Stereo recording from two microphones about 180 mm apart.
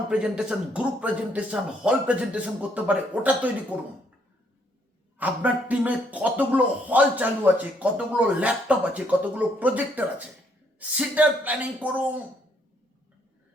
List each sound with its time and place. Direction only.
0.1 s a man's voice: 5° right (ahead or behind)
5.1 s a man's voice: 10° right (ahead or behind)